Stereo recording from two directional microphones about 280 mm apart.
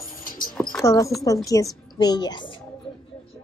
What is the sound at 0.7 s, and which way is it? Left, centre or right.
Speech, centre.